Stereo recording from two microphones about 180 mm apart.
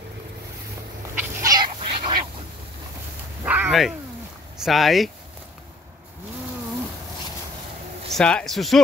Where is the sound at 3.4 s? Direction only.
10° right (ahead or behind).